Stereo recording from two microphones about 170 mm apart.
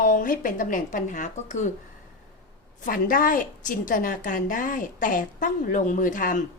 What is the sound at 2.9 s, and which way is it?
A woman's voice, 55° left (ahead or behind).